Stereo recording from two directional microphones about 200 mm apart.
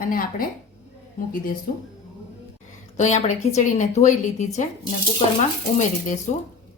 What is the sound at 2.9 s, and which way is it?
Speech, 35° left (ahead or behind).